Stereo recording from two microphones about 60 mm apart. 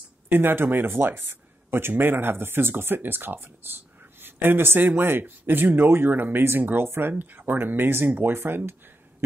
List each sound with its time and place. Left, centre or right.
0.3 s speech: right